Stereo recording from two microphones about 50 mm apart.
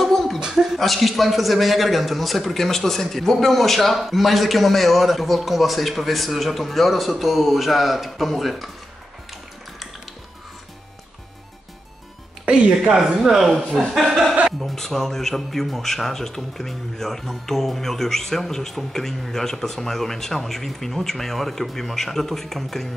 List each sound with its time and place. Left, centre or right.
0.0 s dog: centre
0.4 s a man's voice: centre
12.4 s a woman's voice: right
13.2 s a man's voice: centre
14.6 s a man's voice: centre